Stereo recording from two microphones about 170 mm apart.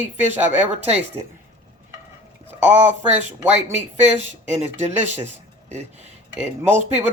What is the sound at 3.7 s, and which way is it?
Speech, 40° right (ahead or behind).